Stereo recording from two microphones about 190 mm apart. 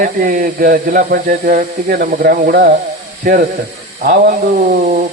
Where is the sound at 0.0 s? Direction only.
45° right (ahead or behind).